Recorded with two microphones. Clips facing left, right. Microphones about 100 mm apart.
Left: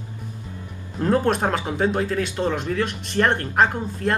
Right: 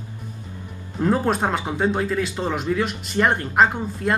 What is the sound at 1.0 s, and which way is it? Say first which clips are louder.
Speech: even; 5° right (ahead or behind).